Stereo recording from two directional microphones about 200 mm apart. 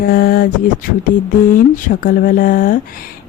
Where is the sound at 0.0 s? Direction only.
45° left (ahead or behind).